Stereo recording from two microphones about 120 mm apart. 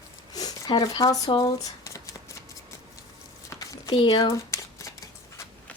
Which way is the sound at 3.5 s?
25° left (ahead or behind).